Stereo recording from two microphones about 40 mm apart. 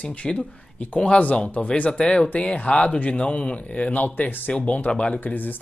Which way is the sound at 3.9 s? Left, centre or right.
Left.